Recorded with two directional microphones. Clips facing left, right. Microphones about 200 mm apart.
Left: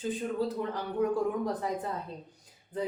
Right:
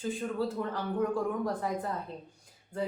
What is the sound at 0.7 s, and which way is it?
Speech, 15° left (ahead or behind).